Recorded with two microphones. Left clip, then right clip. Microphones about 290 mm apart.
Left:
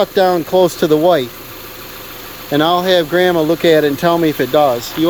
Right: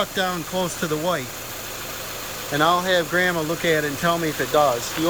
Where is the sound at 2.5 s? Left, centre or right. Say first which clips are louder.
Left 7 dB; left.